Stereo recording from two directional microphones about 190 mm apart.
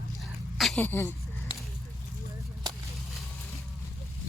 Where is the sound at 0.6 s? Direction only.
Centre (ahead or behind).